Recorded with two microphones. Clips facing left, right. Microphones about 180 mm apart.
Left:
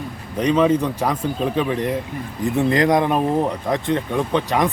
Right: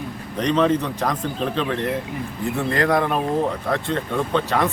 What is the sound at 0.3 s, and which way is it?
Speech, 10° left (ahead or behind).